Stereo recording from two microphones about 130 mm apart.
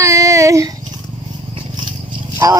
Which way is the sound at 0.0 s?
25° right (ahead or behind).